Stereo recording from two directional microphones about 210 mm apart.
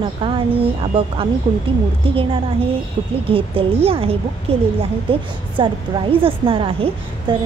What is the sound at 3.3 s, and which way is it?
Speech, 25° right (ahead or behind).